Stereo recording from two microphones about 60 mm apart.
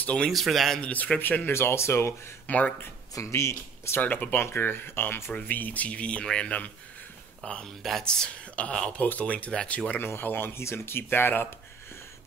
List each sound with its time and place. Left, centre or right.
0.3 s speech: centre
0.7 s speech: left
1.2 s speech: left
2.4 s speech: left
3.2 s speech: left
4.0 s speech: left
5.5 s speech: left
9.9 s speech: left